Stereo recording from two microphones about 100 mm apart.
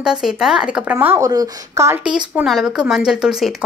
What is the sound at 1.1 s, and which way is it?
Speech, 35° right (ahead or behind).